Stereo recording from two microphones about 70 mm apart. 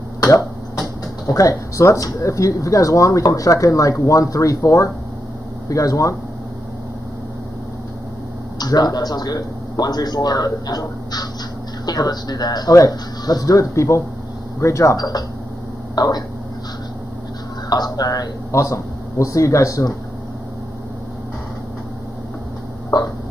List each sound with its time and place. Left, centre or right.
0.2 s cough: left
1.2 s speech: left
8.5 s a man's voice: left
15.0 s a man's voice: left
17.6 s speech: left
18.5 s speech: left
22.9 s hiccup: left